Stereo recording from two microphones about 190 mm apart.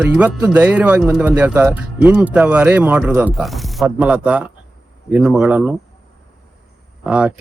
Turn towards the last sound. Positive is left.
turn(degrees=-5)  # may be behind; listen again after turning